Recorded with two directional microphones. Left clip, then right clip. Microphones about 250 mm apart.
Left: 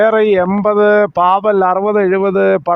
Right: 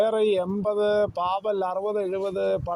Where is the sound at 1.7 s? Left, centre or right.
Left.